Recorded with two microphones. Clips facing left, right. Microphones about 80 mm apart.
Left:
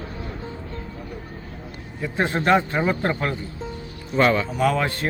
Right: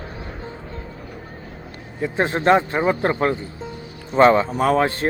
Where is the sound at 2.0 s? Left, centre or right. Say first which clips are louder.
Right 2 dB; right.